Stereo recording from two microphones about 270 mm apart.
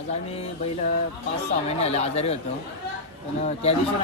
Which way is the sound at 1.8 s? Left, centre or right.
Left.